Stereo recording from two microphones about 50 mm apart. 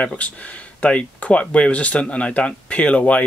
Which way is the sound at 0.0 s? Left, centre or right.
Left.